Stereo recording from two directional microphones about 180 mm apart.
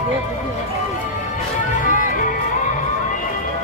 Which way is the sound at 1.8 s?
45° left (ahead or behind).